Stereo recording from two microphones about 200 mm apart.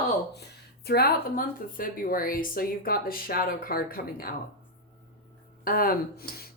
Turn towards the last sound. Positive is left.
turn(degrees=50)  # may be behind; listen again after turning